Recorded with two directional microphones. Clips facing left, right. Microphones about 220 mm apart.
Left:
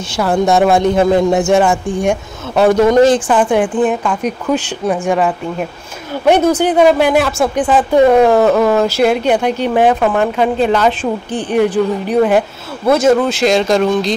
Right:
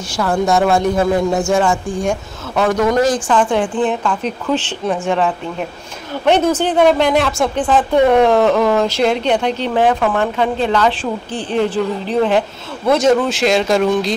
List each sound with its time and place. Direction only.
0.1 s speech: 25° left (ahead or behind)
2.5 s speech: 30° left (ahead or behind)
3.3 s speech: 15° left (ahead or behind); by 14.1 s 5° right (ahead or behind)